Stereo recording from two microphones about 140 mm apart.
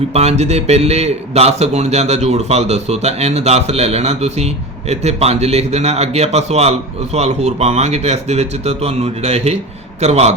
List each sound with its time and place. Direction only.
0.1 s a man's voice: 50° right (ahead or behind)